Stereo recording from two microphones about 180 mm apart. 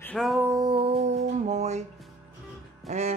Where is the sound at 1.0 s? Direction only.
40° right (ahead or behind).